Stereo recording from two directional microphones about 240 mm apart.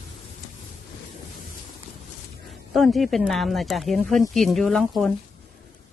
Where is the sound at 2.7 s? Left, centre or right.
Centre.